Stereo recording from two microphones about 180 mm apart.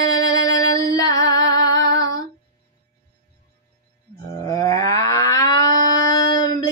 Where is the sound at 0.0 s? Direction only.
20° left (ahead or behind).